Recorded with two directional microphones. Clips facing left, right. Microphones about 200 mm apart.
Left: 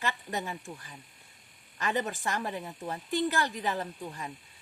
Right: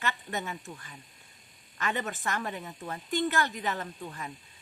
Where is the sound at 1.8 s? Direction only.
30° left (ahead or behind).